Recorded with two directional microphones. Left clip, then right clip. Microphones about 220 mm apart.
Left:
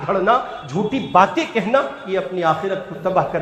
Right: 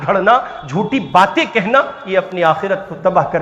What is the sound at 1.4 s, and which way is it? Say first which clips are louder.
A man's voice: right 5 dB; 35° right (ahead or behind).